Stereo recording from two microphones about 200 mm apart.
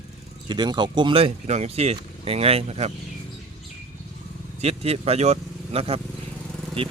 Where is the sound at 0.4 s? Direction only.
20° right (ahead or behind).